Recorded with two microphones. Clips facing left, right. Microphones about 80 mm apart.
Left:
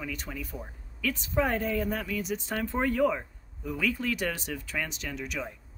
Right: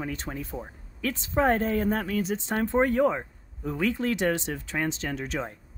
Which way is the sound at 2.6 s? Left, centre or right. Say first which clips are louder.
Right 4 dB; right.